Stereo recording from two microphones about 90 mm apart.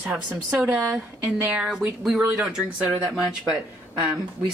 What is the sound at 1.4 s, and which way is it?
Speech, 15° right (ahead or behind).